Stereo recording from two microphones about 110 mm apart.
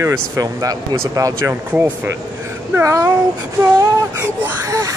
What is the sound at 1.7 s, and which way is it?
Speech, 15° right (ahead or behind).